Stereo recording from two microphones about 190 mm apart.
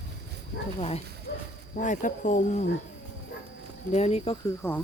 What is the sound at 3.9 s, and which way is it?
Speech, 35° left (ahead or behind).